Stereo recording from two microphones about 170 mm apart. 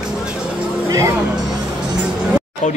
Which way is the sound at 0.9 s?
20° right (ahead or behind).